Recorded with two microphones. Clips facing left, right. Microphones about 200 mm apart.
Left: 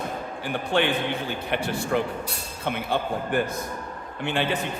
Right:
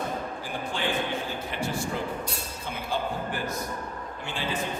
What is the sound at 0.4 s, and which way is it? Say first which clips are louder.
A man's voice: left 9 dB; 65° left (ahead or behind).